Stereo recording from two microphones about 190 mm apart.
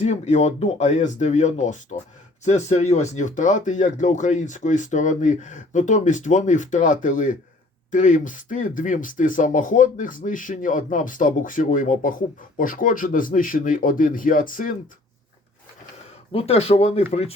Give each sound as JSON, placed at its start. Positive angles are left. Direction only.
{"t": 0.0, "sound": "speech", "side_deg": 35}
{"t": 16.3, "sound": "speech", "side_deg": 30}